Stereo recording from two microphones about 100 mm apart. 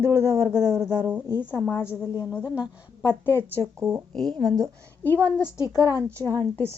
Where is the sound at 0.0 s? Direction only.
25° right (ahead or behind).